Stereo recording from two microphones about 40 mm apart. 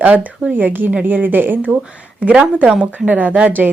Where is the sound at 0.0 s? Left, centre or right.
Right.